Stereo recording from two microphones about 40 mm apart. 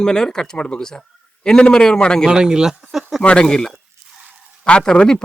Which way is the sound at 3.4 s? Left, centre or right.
Centre.